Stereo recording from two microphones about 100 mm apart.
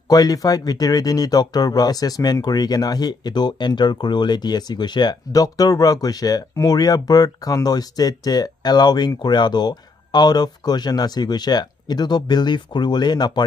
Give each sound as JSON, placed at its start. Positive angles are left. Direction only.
{"t": 0.1, "sound": "speech", "side_deg": 35}